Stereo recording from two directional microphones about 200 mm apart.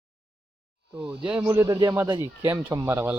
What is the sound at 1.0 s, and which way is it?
Speech, 5° right (ahead or behind).